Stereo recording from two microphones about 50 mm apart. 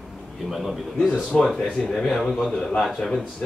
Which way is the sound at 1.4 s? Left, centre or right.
Centre.